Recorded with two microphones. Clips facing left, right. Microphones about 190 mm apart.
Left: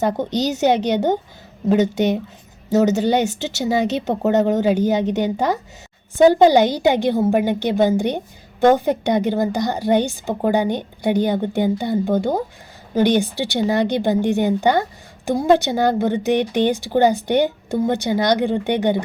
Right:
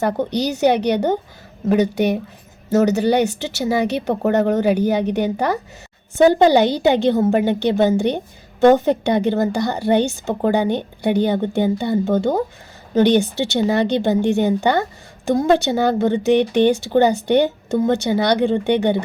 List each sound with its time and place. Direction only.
0.0 s a woman's voice: 20° left (ahead or behind)